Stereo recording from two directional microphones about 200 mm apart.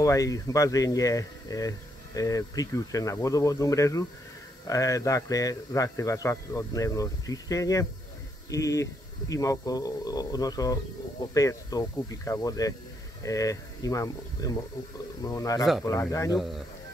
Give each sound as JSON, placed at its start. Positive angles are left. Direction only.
{"t": 0.0, "sound": "speech", "side_deg": 15}
{"t": 16.3, "sound": "speech", "side_deg": 0}